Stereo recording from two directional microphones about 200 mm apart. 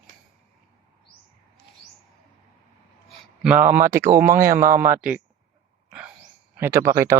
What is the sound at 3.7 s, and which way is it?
Speech, 10° right (ahead or behind).